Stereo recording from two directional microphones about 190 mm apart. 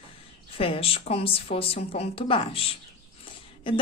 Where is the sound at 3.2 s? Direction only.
25° left (ahead or behind).